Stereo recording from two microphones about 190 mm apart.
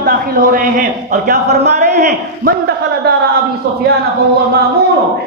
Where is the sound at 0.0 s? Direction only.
50° right (ahead or behind).